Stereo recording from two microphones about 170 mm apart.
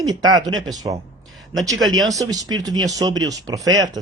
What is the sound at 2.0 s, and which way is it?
Speech, 20° right (ahead or behind).